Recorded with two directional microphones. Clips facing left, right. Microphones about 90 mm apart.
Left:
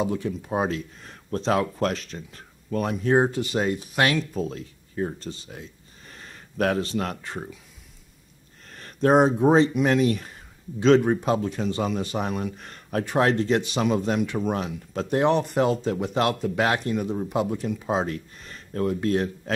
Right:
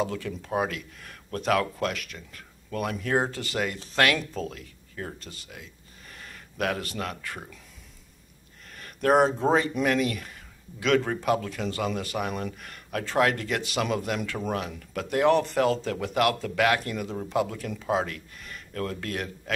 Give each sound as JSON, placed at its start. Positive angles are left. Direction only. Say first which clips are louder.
{"t": 0.0, "sound": "speech", "louder": "left 3 dB", "side_deg": 20}
{"t": 8.6, "sound": "a sound", "louder": "left 4 dB", "side_deg": 35}
{"t": 9.1, "sound": "speech", "louder": "left 3 dB", "side_deg": 20}
{"t": 9.8, "sound": "speech", "louder": "left 4 dB", "side_deg": 35}